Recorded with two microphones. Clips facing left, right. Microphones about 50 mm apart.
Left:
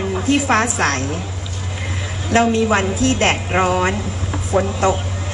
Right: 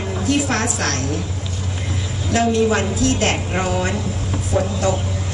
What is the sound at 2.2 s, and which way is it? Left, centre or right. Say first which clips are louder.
A woman's voice: left 2 dB; left.